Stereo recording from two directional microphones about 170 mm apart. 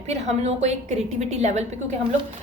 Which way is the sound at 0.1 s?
40° right (ahead or behind).